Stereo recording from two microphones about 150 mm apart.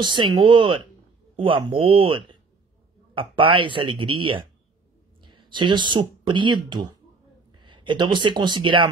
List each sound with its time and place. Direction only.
0.0 s speech: 30° right (ahead or behind)